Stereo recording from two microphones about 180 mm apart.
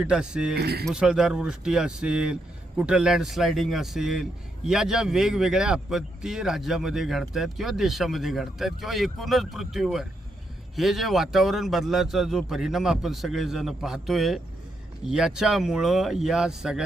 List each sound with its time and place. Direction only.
0.0 s speech: 5° right (ahead or behind)
0.5 s speech: 60° right (ahead or behind)
0.9 s speech: 5° right (ahead or behind)